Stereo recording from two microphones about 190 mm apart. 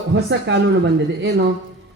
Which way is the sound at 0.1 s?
70° right (ahead or behind).